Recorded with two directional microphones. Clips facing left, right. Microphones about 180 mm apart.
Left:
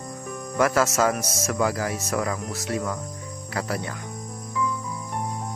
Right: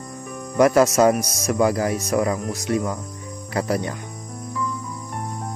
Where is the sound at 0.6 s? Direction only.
20° right (ahead or behind).